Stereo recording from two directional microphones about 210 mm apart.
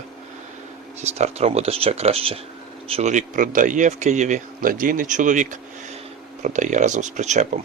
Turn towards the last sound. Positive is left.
turn(degrees=-35)  # may be behind; listen again after turning